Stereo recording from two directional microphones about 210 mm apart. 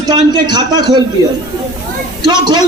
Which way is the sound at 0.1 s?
20° right (ahead or behind).